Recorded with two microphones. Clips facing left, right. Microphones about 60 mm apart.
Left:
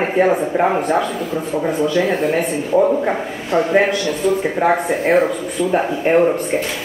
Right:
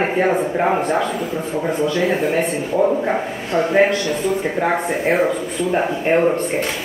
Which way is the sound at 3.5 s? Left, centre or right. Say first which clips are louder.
Left 2 dB; left.